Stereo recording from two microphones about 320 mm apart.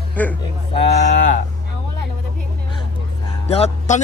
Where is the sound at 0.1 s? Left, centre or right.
Centre.